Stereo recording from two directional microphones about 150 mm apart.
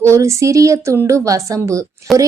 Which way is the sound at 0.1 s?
20° right (ahead or behind).